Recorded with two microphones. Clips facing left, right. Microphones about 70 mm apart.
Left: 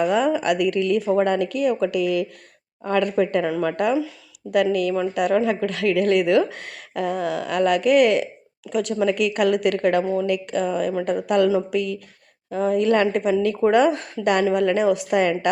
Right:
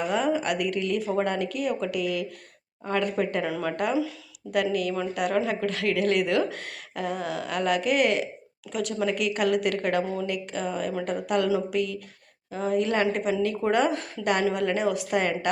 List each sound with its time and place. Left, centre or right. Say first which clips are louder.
0.0 s a woman's voice: left 6 dB; left